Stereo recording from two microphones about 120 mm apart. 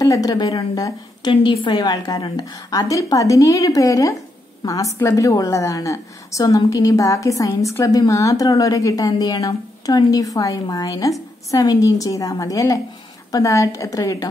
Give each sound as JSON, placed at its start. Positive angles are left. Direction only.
{"t": 0.0, "sound": "a woman's voice", "side_deg": 30}
{"t": 1.8, "sound": "a woman's voice", "side_deg": 35}